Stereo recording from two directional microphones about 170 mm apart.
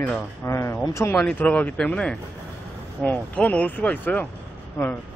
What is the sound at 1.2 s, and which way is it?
Speech, 5° left (ahead or behind).